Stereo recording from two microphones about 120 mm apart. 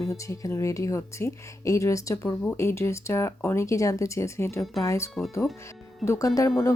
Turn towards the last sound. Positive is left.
turn(degrees=25)  # may be behind; listen again after turning